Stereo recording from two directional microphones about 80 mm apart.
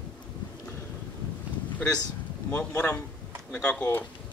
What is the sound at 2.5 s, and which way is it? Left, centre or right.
Speech, centre.